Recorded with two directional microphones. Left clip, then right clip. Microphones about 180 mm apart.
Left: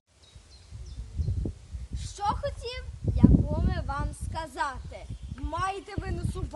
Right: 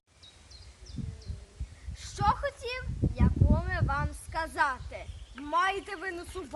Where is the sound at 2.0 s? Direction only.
20° left (ahead or behind).